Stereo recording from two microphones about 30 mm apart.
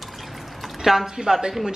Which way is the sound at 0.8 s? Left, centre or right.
Centre.